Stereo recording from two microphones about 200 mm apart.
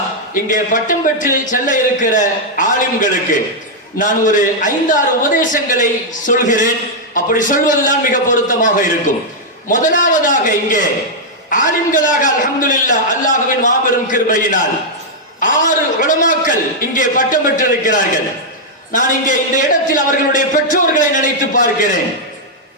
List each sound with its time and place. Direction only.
0.4 s a man's voice: 40° left (ahead or behind)